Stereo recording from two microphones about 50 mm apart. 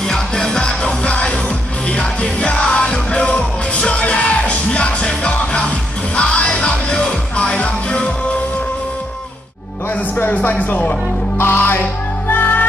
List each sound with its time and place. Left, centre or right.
0.0 s music: centre
10.1 s speech: left
11.3 s music: left